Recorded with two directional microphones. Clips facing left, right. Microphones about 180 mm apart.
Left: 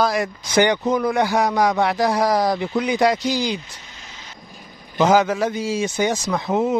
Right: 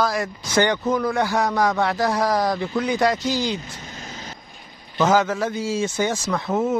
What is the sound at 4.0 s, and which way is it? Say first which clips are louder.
Vehicle: right 7 dB; 45° right (ahead or behind).